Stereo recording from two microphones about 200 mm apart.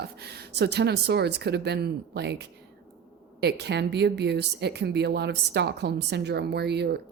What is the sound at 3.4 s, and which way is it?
A woman's voice, 55° right (ahead or behind).